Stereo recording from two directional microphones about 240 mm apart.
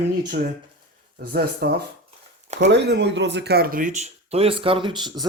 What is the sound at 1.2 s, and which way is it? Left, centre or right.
Speech, right.